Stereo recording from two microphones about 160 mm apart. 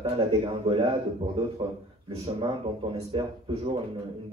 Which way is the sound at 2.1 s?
30° right (ahead or behind).